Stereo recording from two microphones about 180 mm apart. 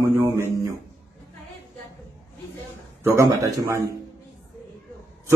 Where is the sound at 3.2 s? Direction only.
20° right (ahead or behind).